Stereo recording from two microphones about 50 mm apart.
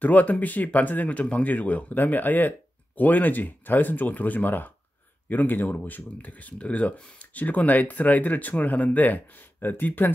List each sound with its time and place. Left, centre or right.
0.0 s speech: left